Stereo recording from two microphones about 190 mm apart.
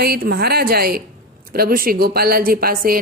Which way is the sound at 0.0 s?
55° right (ahead or behind).